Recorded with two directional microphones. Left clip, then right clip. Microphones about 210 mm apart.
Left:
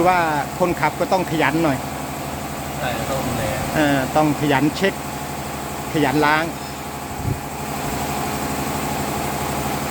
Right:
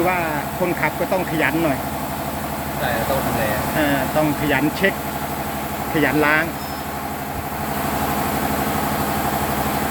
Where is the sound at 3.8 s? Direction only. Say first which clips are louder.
Left 3 dB; 25° left (ahead or behind).